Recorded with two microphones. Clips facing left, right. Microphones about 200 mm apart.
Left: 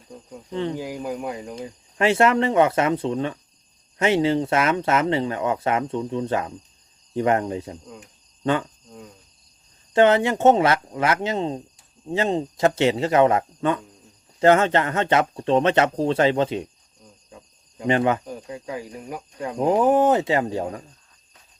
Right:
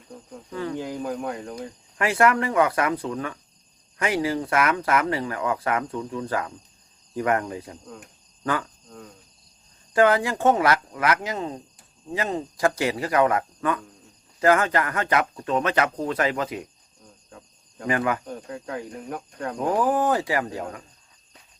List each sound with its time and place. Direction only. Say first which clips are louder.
0.5 s speech: left 3 dB; 25° left (ahead or behind)
0.8 s speech: even; 10° left (ahead or behind)
2.0 s speech: left 3 dB; 25° left (ahead or behind)
9.9 s speech: left 3 dB; 25° left (ahead or behind)
17.8 s speech: left 4 dB; 25° left (ahead or behind)
18.3 s speech: left 1 dB; 10° left (ahead or behind)
19.5 s speech: left 5 dB; 25° left (ahead or behind)